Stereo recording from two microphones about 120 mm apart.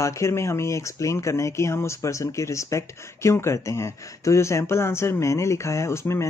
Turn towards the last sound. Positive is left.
turn(degrees=20)  # may be behind; listen again after turning